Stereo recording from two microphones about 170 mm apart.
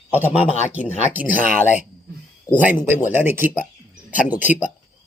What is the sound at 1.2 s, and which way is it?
Speech, 50° left (ahead or behind).